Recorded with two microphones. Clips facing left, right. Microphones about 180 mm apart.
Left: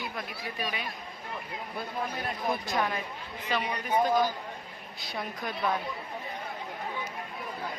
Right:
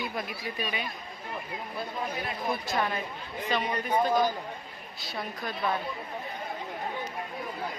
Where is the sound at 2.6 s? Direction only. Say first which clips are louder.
Right 1 dB; centre (ahead or behind).